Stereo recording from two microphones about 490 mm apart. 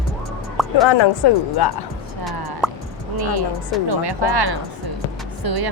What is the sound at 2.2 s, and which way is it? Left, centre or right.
Music, centre.